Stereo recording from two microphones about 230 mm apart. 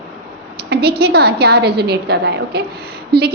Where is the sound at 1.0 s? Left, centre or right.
Right.